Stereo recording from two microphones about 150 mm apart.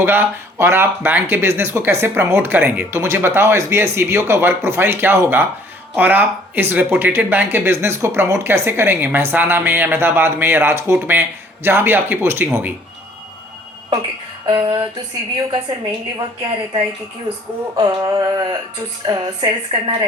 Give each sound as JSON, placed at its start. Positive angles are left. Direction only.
{"t": 0.0, "sound": "speech", "side_deg": -15}
{"t": 14.4, "sound": "speech", "side_deg": -30}
{"t": 16.4, "sound": "speech", "side_deg": -30}